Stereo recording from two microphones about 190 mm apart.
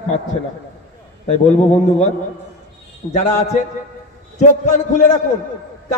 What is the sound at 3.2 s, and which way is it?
A man's voice, 40° left (ahead or behind).